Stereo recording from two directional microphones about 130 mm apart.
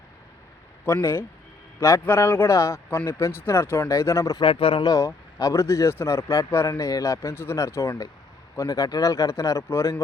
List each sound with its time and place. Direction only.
0.9 s speech: 20° left (ahead or behind)
4.4 s speech: 40° left (ahead or behind)
4.8 s speech: 25° left (ahead or behind)